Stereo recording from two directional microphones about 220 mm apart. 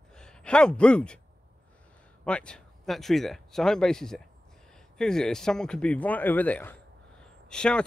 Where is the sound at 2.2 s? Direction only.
5° left (ahead or behind).